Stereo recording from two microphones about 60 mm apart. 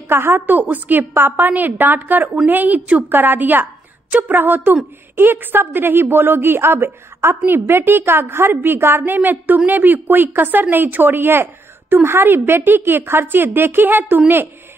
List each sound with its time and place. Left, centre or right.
0.1 s a woman's voice: right